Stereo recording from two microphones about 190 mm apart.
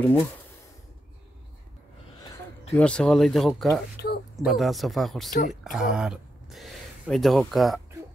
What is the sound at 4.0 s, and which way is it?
Speech, 60° left (ahead or behind).